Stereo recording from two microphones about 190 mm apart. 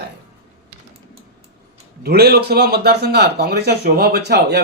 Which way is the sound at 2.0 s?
55° right (ahead or behind).